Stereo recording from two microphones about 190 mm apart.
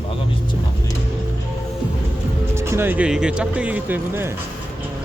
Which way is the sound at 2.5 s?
15° right (ahead or behind).